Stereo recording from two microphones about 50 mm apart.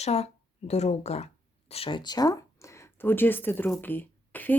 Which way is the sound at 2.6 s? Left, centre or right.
Left.